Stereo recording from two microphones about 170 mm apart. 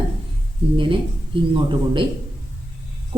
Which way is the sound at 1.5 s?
30° right (ahead or behind).